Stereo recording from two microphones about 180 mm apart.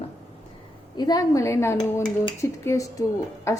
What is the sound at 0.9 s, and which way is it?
Speech, 20° left (ahead or behind).